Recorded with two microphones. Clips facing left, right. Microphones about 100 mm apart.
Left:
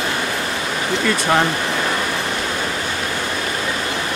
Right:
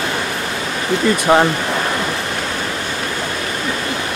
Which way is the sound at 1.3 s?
20° right (ahead or behind).